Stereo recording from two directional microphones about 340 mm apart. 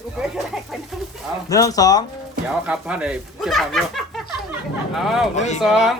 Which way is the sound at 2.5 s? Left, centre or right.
Centre.